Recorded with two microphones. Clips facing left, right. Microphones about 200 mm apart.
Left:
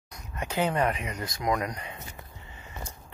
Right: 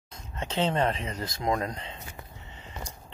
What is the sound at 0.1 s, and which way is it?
Speech, 25° right (ahead or behind).